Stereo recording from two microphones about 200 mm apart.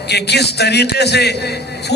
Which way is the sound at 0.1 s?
55° left (ahead or behind).